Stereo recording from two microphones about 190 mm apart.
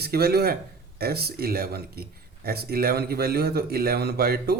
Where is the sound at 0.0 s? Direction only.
55° right (ahead or behind).